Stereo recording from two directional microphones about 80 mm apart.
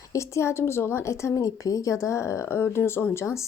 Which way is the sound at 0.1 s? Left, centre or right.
Left.